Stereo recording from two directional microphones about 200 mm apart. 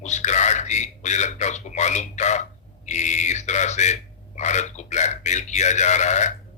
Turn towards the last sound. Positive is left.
turn(degrees=35)  # may be behind; listen again after turning